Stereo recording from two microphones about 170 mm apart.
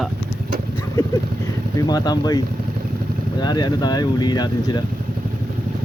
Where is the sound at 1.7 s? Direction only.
25° left (ahead or behind).